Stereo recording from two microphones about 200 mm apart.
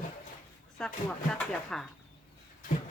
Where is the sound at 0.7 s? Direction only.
5° left (ahead or behind).